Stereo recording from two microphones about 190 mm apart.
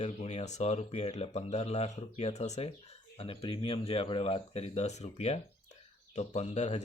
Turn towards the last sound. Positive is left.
turn(degrees=35)  # may be behind; listen again after turning